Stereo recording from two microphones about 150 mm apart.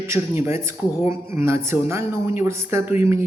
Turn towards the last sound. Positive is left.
turn(degrees=-15)  # may be behind; listen again after turning